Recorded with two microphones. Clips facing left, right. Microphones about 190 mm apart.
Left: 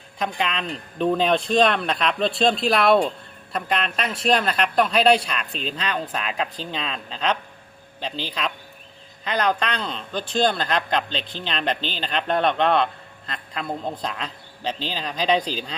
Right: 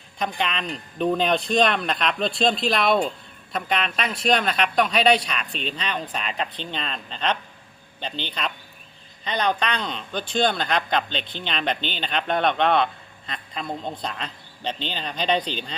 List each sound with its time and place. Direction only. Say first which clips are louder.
0.2 s a man's voice: left 1 dB; centre (ahead or behind)
11.2 s speech: left 1 dB; 35° left (ahead or behind)
11.9 s a man's voice: left 2 dB; centre (ahead or behind)